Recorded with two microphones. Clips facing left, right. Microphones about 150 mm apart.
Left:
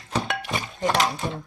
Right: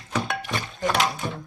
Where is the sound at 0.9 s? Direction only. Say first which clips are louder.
Left 1 dB; centre (ahead or behind).